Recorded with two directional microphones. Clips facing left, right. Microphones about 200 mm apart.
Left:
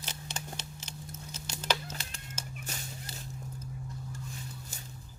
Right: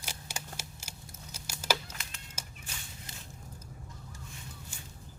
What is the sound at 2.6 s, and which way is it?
Fowl, 40° left (ahead or behind).